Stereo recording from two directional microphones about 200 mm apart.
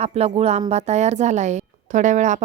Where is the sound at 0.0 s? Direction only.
30° right (ahead or behind).